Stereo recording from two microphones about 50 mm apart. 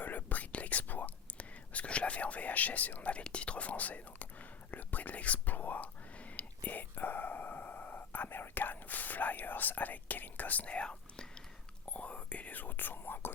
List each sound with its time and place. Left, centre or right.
0.0 s whispering: left